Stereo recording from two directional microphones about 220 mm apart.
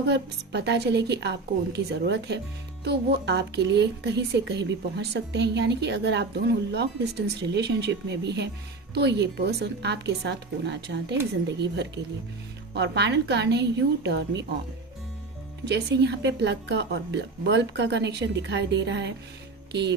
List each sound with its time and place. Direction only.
0.0 s speech: 50° right (ahead or behind)
12.7 s speech: 50° right (ahead or behind)
15.6 s speech: 50° right (ahead or behind)